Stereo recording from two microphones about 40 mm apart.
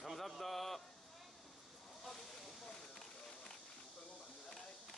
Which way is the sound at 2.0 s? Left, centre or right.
Centre.